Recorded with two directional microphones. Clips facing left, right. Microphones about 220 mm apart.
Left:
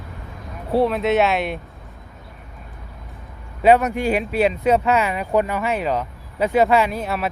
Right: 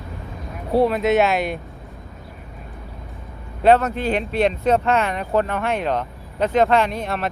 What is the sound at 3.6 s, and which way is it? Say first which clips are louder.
Speech: left 1 dB; 10° left (ahead or behind).